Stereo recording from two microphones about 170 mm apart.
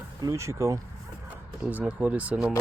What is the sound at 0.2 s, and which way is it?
Speech, 20° right (ahead or behind).